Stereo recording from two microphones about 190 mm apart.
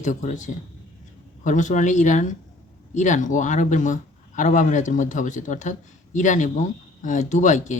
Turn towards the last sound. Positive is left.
turn(degrees=40)  # may be behind; listen again after turning